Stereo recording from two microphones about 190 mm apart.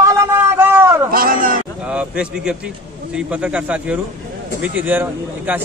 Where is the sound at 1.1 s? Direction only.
50° right (ahead or behind).